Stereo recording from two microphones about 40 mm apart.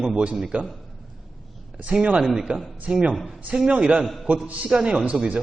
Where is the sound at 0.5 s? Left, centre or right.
Right.